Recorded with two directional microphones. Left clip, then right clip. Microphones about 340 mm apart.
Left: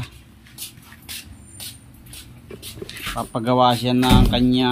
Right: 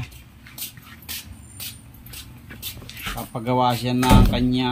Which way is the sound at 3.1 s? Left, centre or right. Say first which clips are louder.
Left 4 dB; centre.